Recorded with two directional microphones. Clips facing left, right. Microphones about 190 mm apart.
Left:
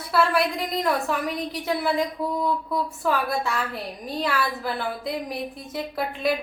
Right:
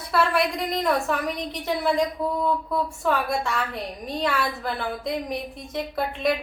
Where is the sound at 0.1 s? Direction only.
Centre (ahead or behind).